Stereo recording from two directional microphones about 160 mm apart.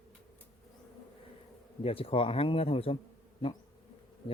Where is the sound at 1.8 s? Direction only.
35° left (ahead or behind).